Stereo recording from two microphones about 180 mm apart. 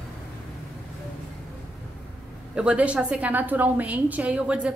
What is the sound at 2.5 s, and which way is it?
A woman's voice, 5° right (ahead or behind).